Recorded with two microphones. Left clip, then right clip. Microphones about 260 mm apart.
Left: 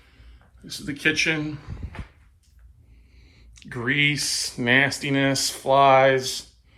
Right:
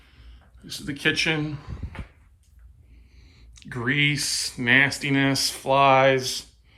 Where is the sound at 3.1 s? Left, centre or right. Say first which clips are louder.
Even; centre.